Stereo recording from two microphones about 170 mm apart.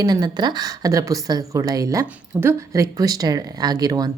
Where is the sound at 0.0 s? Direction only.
25° right (ahead or behind).